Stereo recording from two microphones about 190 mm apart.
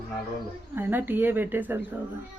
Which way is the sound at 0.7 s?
10° right (ahead or behind).